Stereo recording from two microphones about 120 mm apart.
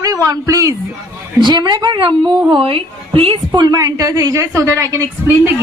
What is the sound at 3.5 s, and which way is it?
A woman's voice, 35° right (ahead or behind).